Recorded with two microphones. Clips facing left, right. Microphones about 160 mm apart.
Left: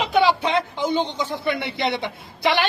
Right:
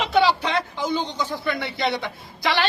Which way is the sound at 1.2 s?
25° left (ahead or behind).